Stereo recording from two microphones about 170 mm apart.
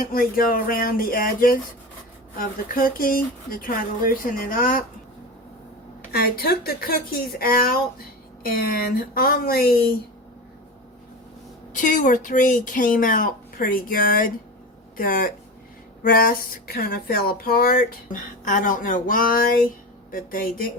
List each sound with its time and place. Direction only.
0.0 s speech: 60° left (ahead or behind)
6.1 s speech: 65° left (ahead or behind)
11.7 s speech: 50° left (ahead or behind)